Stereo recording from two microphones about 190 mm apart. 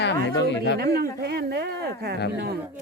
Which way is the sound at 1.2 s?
60° right (ahead or behind).